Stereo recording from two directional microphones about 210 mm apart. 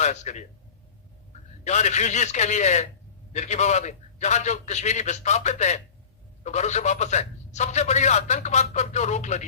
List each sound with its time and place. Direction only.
0.0 s a man's voice: 35° left (ahead or behind)
1.6 s a man's voice: 35° left (ahead or behind)